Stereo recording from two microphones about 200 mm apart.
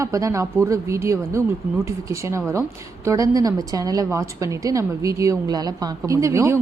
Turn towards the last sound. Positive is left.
turn(degrees=-15)  # may be behind; listen again after turning